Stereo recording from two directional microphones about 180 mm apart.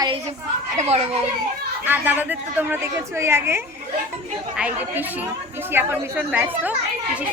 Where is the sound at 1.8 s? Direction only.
10° right (ahead or behind).